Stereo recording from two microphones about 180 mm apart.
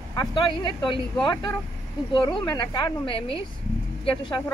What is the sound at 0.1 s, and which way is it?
Speech, 25° left (ahead or behind).